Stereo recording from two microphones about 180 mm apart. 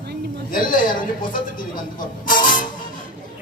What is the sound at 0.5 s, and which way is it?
Speech, 50° left (ahead or behind).